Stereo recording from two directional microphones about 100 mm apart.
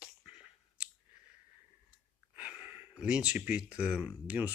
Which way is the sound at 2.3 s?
15° right (ahead or behind).